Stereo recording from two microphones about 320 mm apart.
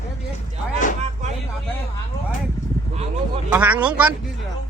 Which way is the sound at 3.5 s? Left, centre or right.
Centre.